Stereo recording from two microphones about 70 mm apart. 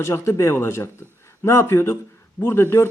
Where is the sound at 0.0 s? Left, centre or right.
Left.